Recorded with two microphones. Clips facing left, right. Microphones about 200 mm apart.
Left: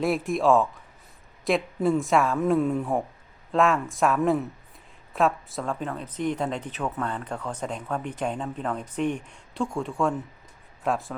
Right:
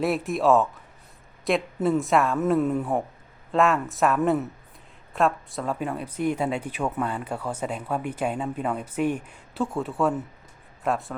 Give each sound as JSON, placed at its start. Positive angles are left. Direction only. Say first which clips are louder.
{"t": 0.0, "sound": "speech", "louder": "even", "side_deg": 0}
{"t": 5.8, "sound": "speech", "louder": "right 4 dB", "side_deg": -10}